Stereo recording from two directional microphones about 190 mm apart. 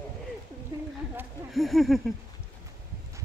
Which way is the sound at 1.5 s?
Centre (ahead or behind).